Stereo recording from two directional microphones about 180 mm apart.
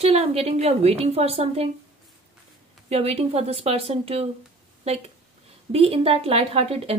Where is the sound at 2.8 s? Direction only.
35° right (ahead or behind).